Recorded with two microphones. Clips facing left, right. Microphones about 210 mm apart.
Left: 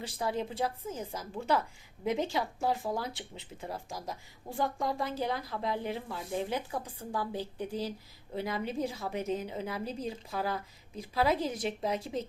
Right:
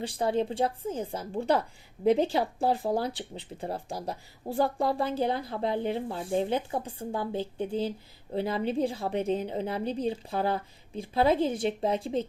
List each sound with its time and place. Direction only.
0.0 s speech: 30° right (ahead or behind)